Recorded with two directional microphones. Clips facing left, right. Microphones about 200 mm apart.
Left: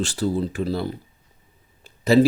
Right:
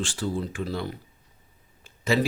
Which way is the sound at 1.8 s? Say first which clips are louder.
Left 8 dB; 35° left (ahead or behind).